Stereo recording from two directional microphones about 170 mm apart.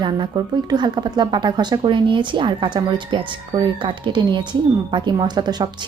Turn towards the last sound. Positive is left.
turn(degrees=-25)  # may be behind; listen again after turning